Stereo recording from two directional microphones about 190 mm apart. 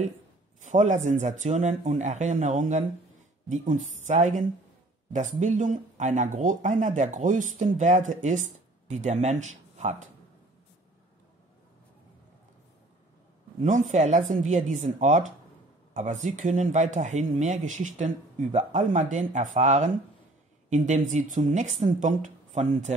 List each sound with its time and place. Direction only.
0.6 s speech: 40° right (ahead or behind)
13.6 s speech: 40° right (ahead or behind)